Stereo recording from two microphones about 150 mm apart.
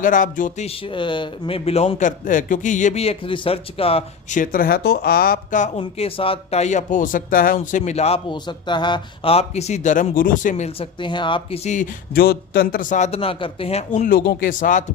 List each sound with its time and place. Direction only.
0.0 s speech: 65° left (ahead or behind)
0.9 s a man's voice: 30° left (ahead or behind)
4.3 s speech: 65° left (ahead or behind)
5.8 s speech: 40° left (ahead or behind)
8.3 s speech: 30° left (ahead or behind); by 10.8 s 50° left (ahead or behind)
11.0 s a man's voice: 30° left (ahead or behind)
11.6 s speech: 50° left (ahead or behind)
12.1 s speech: 90° left; by 13.1 s 60° left (ahead or behind)
13.1 s a man's voice: 40° left (ahead or behind)
14.0 s speech: 75° left (ahead or behind)